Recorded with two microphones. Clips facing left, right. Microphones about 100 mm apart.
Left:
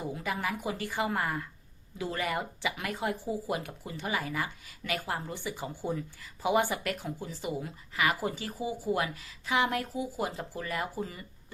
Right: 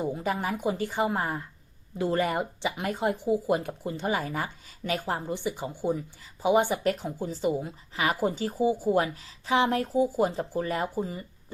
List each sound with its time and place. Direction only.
0.0 s speech: 35° right (ahead or behind)
3.5 s speech: 40° right (ahead or behind)
5.3 s speech: 20° right (ahead or behind)